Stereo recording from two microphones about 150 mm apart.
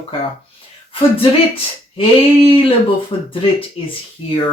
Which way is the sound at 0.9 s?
40° left (ahead or behind).